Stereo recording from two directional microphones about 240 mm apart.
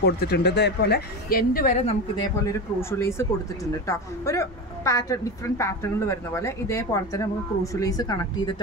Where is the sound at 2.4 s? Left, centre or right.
Centre.